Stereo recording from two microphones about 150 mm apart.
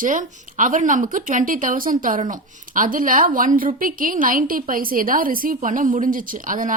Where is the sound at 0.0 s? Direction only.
60° right (ahead or behind).